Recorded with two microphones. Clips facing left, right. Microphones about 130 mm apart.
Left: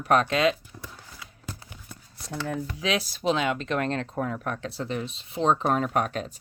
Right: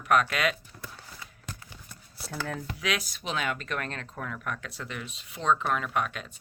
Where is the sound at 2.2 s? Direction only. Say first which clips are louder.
Left 2 dB; 5° right (ahead or behind).